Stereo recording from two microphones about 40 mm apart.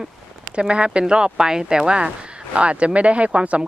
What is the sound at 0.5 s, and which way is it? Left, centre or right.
Speech, right.